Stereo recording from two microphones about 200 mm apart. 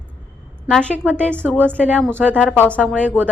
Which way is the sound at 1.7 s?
10° right (ahead or behind).